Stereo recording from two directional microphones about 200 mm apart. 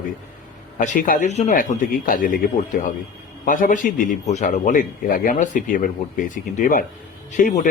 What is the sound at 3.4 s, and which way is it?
A man's voice, 40° left (ahead or behind).